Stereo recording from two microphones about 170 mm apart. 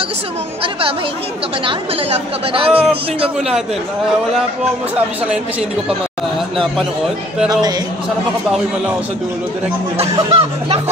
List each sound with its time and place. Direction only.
1.7 s speech: 35° right (ahead or behind)
3.3 s a man's voice: 5° right (ahead or behind)
10.1 s speech: 35° right (ahead or behind)